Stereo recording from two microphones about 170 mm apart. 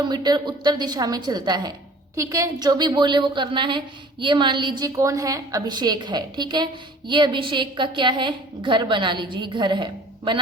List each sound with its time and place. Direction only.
0.0 s a woman's voice: 25° right (ahead or behind)